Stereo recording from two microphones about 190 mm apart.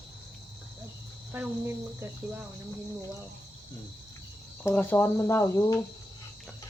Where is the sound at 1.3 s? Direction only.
10° right (ahead or behind).